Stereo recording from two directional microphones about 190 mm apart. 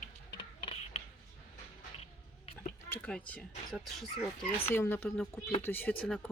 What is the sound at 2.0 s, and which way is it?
Cough, 30° left (ahead or behind).